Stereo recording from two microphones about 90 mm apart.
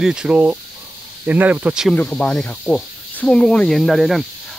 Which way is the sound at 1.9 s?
15° left (ahead or behind).